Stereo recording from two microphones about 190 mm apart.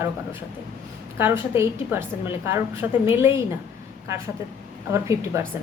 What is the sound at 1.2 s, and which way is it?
A woman's voice, 10° right (ahead or behind).